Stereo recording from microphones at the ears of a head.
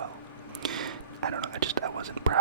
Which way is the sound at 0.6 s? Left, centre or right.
Right.